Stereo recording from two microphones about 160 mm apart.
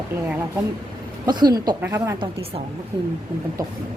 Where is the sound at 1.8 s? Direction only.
15° right (ahead or behind).